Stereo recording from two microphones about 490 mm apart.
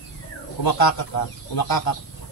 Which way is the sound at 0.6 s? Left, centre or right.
Left.